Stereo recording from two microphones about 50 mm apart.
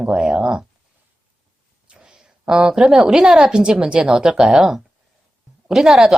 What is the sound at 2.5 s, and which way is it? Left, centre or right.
A woman's voice, centre.